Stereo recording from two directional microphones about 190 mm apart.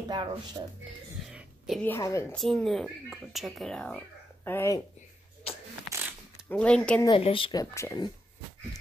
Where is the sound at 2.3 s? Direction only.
5° left (ahead or behind).